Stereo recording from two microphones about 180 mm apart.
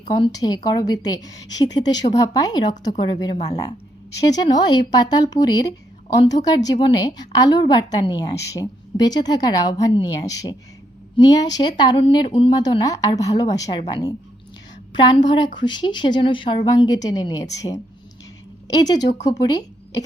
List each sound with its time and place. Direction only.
0.1 s a woman's voice: 25° left (ahead or behind)
3.3 s speech: 35° left (ahead or behind)
3.6 s a woman's voice: 20° left (ahead or behind)
18.8 s a woman's voice: 20° left (ahead or behind)